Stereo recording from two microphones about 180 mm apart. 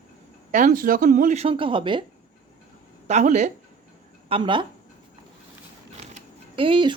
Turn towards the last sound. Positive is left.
turn(degrees=-30)  # may be behind; listen again after turning